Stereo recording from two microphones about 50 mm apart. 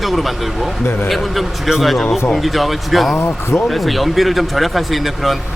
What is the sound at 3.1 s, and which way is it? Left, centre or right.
Speech, left.